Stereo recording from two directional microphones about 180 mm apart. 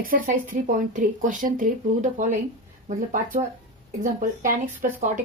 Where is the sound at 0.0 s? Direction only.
50° right (ahead or behind).